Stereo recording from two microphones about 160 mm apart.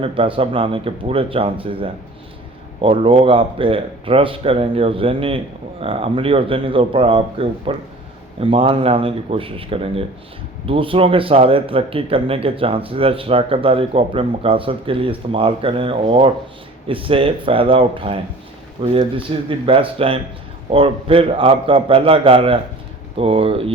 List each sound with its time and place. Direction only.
0.0 s speech: 35° right (ahead or behind)